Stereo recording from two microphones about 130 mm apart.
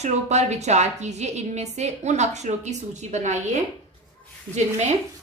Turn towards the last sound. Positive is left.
turn(degrees=-65)  # may be behind; listen again after turning